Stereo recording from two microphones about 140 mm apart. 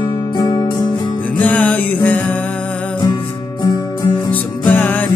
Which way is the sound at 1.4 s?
10° left (ahead or behind).